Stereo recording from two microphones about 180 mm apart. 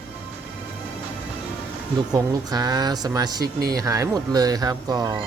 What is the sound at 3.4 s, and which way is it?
Speech, 60° right (ahead or behind).